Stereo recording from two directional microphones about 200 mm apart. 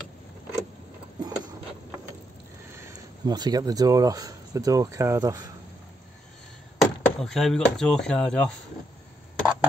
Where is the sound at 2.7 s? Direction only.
20° right (ahead or behind).